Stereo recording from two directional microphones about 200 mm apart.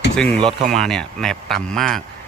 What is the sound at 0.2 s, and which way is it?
Speech, 5° left (ahead or behind).